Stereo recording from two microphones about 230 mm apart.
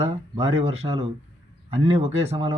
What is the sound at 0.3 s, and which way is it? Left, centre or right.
A man's voice, right.